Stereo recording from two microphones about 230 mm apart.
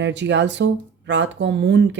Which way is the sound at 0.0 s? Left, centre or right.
Right.